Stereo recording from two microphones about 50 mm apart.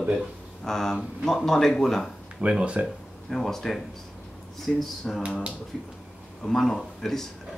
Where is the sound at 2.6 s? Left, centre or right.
Right.